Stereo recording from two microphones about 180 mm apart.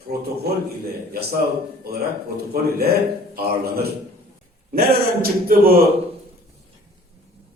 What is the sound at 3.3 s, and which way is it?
A man's voice, 60° right (ahead or behind).